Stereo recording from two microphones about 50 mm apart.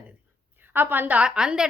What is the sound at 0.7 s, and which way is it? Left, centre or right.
Speech, right.